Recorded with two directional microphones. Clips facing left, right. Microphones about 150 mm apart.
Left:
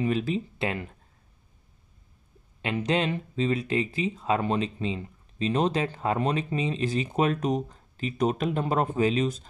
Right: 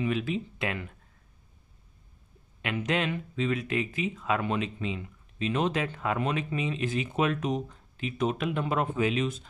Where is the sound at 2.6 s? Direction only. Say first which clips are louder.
Left 3 dB; 30° left (ahead or behind).